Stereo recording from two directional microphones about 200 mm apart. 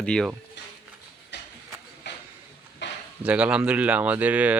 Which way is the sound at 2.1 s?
60° left (ahead or behind).